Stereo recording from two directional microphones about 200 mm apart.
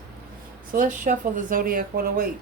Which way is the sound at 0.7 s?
40° right (ahead or behind).